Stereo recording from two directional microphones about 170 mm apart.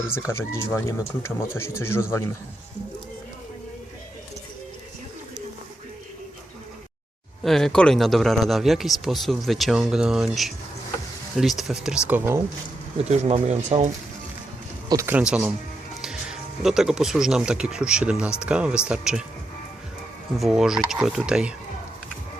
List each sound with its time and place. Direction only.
0.2 s speech: 15° left (ahead or behind)
7.4 s speech: centre (ahead or behind)
13.1 s speech: 40° right (ahead or behind)
14.8 s speech: 15° right (ahead or behind)
20.4 s speech: centre (ahead or behind)